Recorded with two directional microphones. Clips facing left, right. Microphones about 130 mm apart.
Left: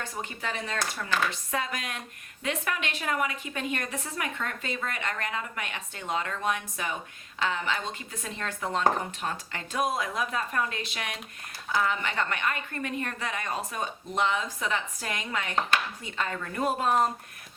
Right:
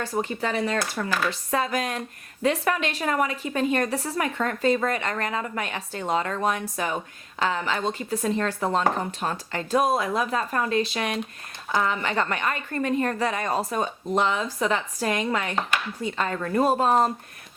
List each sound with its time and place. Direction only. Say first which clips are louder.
0.0 s a woman's voice: right 8 dB; 35° right (ahead or behind)